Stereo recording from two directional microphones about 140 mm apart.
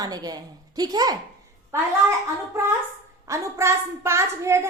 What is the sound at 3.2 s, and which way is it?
A woman's voice, 20° right (ahead or behind).